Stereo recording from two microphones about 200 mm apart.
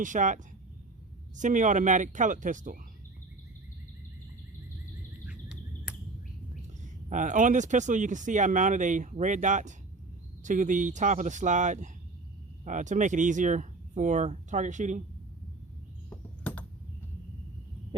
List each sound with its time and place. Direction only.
0.0 s speech: 40° right (ahead or behind)
1.4 s speech: 40° right (ahead or behind)
5.2 s bird: 5° right (ahead or behind)
6.8 s speech: 40° right (ahead or behind)
16.0 s a sound: 5° left (ahead or behind)